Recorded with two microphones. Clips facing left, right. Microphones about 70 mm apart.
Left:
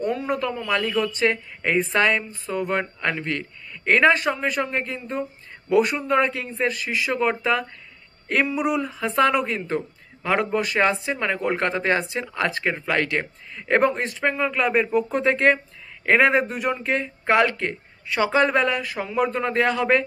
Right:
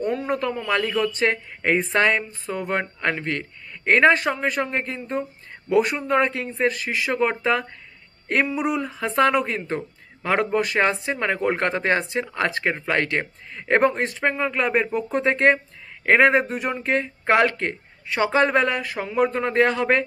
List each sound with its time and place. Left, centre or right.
0.0 s a sound: right
0.7 s a man's voice: right
6.7 s speech: right
7.2 s a man's voice: right
17.3 s speech: right
18.9 s a man's voice: right